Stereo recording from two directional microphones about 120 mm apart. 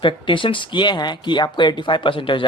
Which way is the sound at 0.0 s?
45° left (ahead or behind).